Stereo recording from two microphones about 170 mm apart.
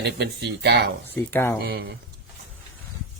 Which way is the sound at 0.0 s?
80° right.